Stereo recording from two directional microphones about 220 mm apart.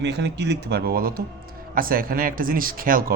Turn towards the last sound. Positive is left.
turn(degrees=-40)  # may be behind; listen again after turning